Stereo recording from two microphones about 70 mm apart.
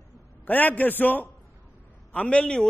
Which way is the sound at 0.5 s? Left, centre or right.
Left.